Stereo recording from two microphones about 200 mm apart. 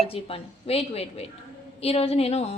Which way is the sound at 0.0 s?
30° left (ahead or behind).